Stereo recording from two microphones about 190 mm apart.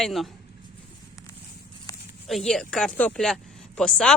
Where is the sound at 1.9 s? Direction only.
20° left (ahead or behind).